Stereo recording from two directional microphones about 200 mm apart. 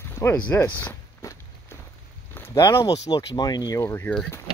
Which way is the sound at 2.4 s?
15° left (ahead or behind).